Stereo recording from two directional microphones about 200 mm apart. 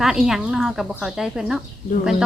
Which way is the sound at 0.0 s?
Centre (ahead or behind).